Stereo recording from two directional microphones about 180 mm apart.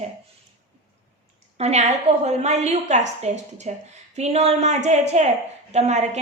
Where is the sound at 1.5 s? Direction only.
35° right (ahead or behind).